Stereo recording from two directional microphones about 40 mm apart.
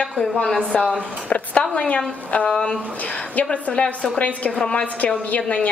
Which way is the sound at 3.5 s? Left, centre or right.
Left.